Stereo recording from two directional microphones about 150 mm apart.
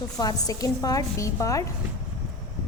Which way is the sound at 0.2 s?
25° left (ahead or behind).